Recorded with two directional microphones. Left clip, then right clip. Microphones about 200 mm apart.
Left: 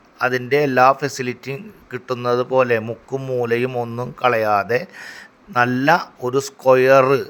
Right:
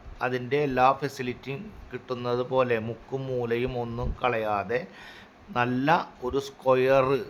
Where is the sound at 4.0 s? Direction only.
30° left (ahead or behind).